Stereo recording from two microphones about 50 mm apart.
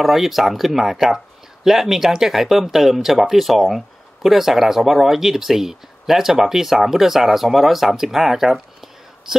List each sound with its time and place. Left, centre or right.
0.0 s speech: centre